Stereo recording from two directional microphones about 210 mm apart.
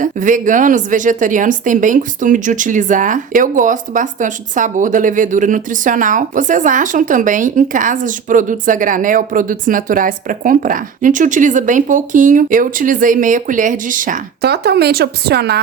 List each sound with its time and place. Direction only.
0.0 s a woman's voice: 40° right (ahead or behind)